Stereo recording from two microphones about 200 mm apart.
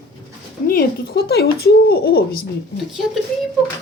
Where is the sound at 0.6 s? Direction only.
50° left (ahead or behind).